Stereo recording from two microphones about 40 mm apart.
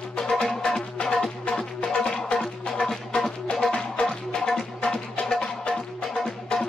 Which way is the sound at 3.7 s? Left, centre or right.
Left.